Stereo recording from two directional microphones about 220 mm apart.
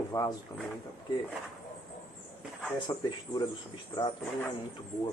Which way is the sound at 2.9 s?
20° left (ahead or behind).